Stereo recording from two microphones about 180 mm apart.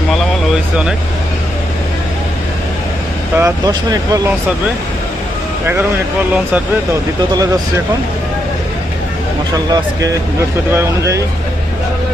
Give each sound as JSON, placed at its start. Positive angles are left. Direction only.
{"t": 3.3, "sound": "speech", "side_deg": -20}
{"t": 9.7, "sound": "speech", "side_deg": -20}